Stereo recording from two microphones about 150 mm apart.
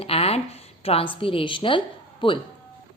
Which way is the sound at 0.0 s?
40° left (ahead or behind).